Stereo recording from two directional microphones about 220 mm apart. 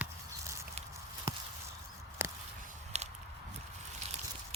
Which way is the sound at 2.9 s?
30° right (ahead or behind).